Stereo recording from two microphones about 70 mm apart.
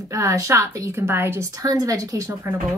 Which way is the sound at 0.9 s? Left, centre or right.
Right.